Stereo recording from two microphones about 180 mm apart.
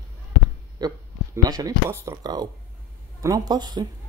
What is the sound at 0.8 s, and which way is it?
Speech, 20° right (ahead or behind).